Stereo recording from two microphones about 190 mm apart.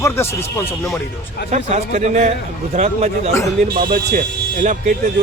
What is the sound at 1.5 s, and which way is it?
A man's voice, 35° right (ahead or behind).